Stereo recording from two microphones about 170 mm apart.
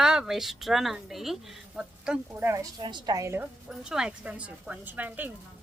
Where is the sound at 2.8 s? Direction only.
25° right (ahead or behind).